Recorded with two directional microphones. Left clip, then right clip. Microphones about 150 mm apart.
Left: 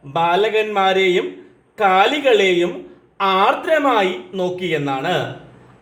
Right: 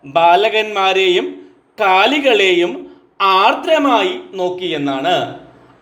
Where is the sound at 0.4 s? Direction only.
55° right (ahead or behind).